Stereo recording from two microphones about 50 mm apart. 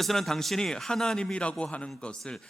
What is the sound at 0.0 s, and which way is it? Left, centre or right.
A man's voice, centre.